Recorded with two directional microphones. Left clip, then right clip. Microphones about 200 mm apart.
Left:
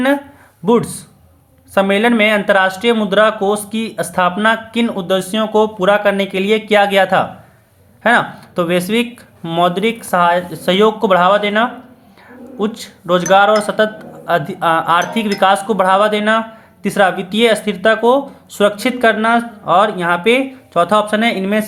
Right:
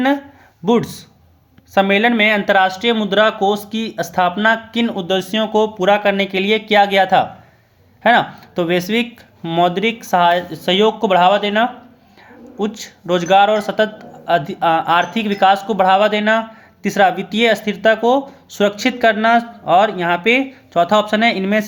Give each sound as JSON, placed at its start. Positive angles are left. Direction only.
{"t": 0.6, "sound": "a man's voice", "side_deg": -20}